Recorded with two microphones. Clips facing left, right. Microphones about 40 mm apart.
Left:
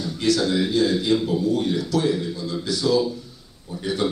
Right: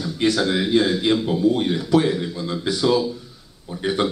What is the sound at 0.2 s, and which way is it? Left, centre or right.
Speech, right.